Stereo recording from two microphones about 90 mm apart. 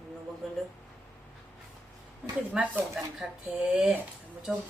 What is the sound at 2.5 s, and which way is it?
Speech, 15° right (ahead or behind).